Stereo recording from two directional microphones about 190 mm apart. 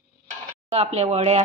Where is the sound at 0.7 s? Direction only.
35° right (ahead or behind).